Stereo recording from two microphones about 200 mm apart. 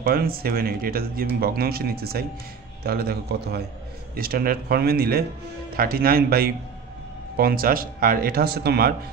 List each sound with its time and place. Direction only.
0.0 s speech: 50° right (ahead or behind)